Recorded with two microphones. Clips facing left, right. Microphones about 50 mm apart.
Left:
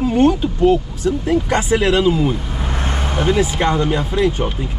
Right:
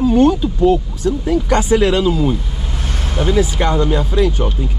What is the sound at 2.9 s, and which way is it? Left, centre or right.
Speech, left.